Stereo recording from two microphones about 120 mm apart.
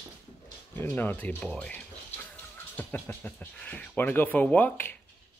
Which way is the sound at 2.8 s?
15° left (ahead or behind).